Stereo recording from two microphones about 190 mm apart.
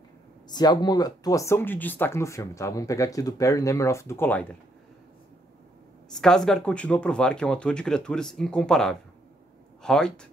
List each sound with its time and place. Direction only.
0.5 s speech: 20° left (ahead or behind)
6.1 s speech: 5° left (ahead or behind)